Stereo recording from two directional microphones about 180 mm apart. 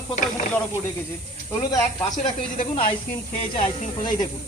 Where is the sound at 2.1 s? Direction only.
45° left (ahead or behind).